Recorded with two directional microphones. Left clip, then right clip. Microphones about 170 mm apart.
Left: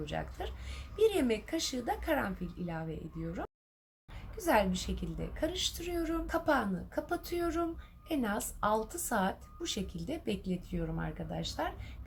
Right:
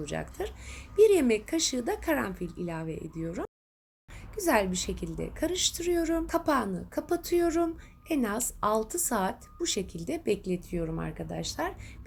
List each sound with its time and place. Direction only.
0.0 s a woman's voice: 40° right (ahead or behind)
4.4 s a woman's voice: 40° right (ahead or behind)